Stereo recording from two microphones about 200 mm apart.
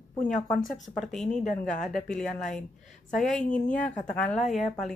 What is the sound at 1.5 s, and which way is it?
Speech, 35° left (ahead or behind).